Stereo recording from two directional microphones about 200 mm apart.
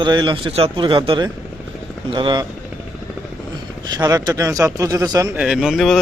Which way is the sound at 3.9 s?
20° right (ahead or behind).